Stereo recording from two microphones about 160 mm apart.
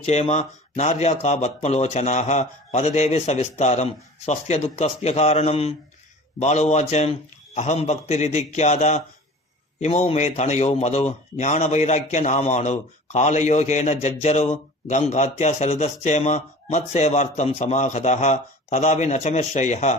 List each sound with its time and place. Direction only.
0.0 s a man's voice: 45° left (ahead or behind)